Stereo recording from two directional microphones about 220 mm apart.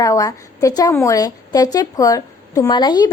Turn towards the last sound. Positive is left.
turn(degrees=20)  # may be behind; listen again after turning